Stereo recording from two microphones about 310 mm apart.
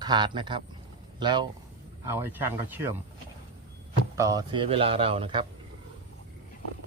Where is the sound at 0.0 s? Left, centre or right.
Centre.